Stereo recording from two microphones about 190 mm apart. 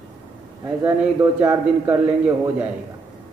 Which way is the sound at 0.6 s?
15° right (ahead or behind).